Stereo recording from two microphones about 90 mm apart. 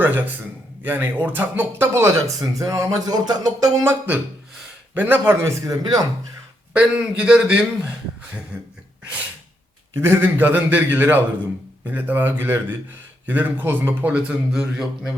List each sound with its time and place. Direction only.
0.0 s a man's voice: 20° right (ahead or behind); by 3.7 s 45° right (ahead or behind)
3.8 s a man's voice: 15° right (ahead or behind)
5.6 s speech: 45° right (ahead or behind)
6.7 s a man's voice: 10° right (ahead or behind)
8.5 s a sound: 15° right (ahead or behind)
9.9 s a man's voice: 30° right (ahead or behind); by 15.1 s 10° right (ahead or behind)